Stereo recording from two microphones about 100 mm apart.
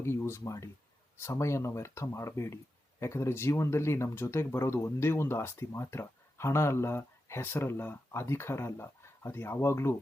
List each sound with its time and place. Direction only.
0.0 s speech: 25° left (ahead or behind)